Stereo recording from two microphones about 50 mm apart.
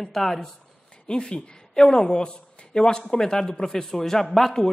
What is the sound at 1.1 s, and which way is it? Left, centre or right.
Speech, centre.